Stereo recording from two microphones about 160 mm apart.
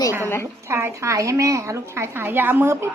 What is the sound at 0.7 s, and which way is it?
A woman's voice, 15° right (ahead or behind).